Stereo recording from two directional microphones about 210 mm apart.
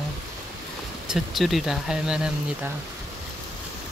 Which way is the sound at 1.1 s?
Centre (ahead or behind).